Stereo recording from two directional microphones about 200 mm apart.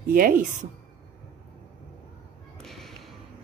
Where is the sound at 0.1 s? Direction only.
45° right (ahead or behind).